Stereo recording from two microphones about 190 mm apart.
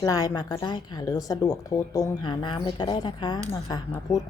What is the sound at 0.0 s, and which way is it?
Speech, 20° left (ahead or behind).